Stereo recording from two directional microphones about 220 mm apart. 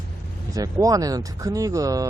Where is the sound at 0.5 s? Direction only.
15° right (ahead or behind).